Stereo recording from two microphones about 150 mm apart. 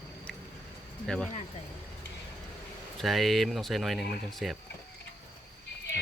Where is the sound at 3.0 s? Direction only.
Centre (ahead or behind).